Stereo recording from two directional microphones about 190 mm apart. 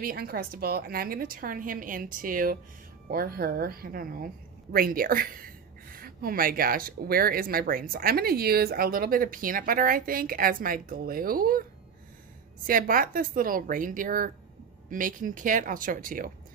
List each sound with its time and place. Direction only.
0.0 s speech: 50° right (ahead or behind)
12.6 s speech: 45° right (ahead or behind)